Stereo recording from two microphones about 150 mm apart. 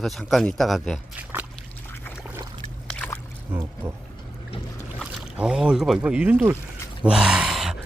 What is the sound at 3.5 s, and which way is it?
Speech, 15° right (ahead or behind).